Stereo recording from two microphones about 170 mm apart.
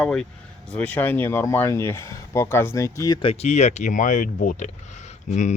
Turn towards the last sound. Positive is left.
turn(degrees=45)  # may be behind; listen again after turning